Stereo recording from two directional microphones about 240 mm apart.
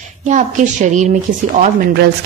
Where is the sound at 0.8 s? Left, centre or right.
Right.